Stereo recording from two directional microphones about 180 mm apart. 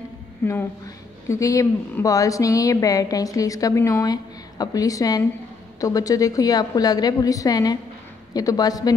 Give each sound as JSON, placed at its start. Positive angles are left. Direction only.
{"t": 0.4, "sound": "a woman's voice", "side_deg": 15}